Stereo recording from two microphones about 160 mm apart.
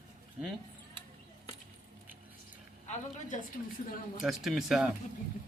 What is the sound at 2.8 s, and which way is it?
Speech, 50° left (ahead or behind).